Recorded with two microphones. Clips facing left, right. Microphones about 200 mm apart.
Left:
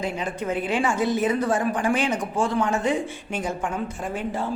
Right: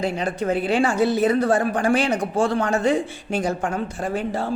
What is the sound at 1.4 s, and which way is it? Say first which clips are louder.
Speech: right 3 dB; 65° right (ahead or behind).